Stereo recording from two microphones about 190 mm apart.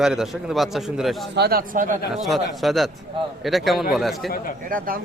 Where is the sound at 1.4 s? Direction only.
55° right (ahead or behind).